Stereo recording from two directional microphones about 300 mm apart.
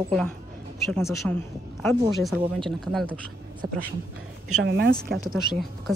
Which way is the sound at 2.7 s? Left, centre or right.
Centre.